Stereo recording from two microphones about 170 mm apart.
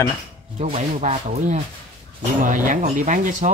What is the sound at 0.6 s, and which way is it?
Speech, 40° right (ahead or behind).